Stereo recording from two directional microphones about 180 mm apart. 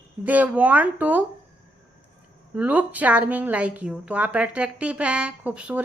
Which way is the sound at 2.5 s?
10° right (ahead or behind).